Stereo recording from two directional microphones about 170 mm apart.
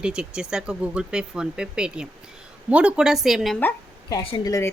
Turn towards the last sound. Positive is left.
turn(degrees=20)  # may be behind; listen again after turning